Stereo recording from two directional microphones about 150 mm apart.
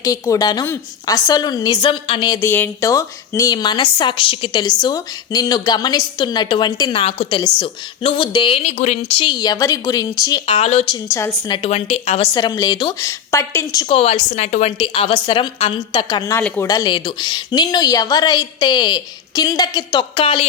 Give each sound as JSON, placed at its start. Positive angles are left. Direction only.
{"t": 0.0, "sound": "speech", "side_deg": 20}
{"t": 2.4, "sound": "speech", "side_deg": 15}
{"t": 7.0, "sound": "a woman's voice", "side_deg": 40}
{"t": 8.6, "sound": "speech", "side_deg": 50}
{"t": 10.4, "sound": "a woman's voice", "side_deg": 40}
{"t": 11.1, "sound": "speech", "side_deg": 20}
{"t": 11.5, "sound": "a woman's voice", "side_deg": 40}
{"t": 12.3, "sound": "speech", "side_deg": 25}
{"t": 13.8, "sound": "a woman's voice", "side_deg": 40}
{"t": 14.8, "sound": "a woman's voice", "side_deg": 35}